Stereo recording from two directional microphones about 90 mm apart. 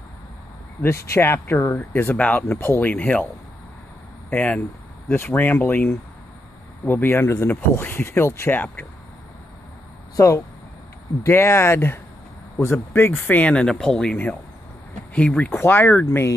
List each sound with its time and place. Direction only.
0.8 s speech: 30° left (ahead or behind)
1.8 s speech: 20° left (ahead or behind)
4.3 s speech: 15° left (ahead or behind)
10.1 s speech: 35° left (ahead or behind)
13.3 s speech: 15° left (ahead or behind)
15.1 s speech: 10° left (ahead or behind)
15.5 s speech: 25° left (ahead or behind)